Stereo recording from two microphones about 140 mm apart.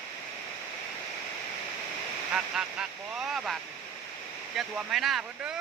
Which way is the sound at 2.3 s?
5° right (ahead or behind).